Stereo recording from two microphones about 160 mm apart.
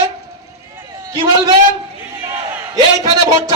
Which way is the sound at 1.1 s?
25° right (ahead or behind).